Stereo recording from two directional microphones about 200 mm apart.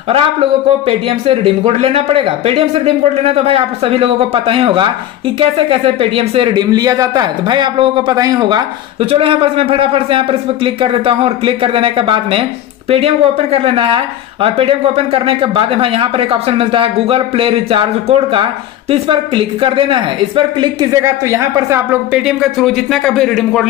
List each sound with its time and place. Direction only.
0.1 s speech: 30° right (ahead or behind); by 23.7 s centre (ahead or behind)